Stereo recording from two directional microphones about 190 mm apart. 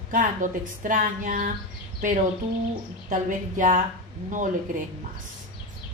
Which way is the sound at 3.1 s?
40° right (ahead or behind).